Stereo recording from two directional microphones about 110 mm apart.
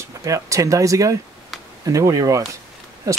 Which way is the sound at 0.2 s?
30° right (ahead or behind).